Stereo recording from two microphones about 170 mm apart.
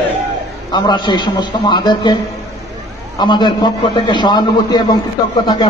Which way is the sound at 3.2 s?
25° left (ahead or behind).